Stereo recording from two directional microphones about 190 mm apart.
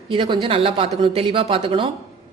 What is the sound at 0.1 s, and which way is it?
A woman's voice, 25° right (ahead or behind).